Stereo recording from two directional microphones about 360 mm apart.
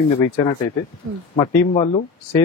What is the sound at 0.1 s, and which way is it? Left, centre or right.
Speech, centre.